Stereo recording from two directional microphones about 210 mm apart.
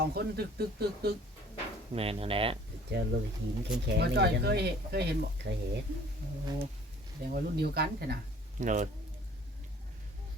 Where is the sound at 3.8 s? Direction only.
55° right (ahead or behind).